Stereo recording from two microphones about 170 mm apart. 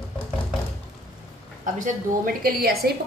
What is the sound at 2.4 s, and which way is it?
Speech, 60° right (ahead or behind).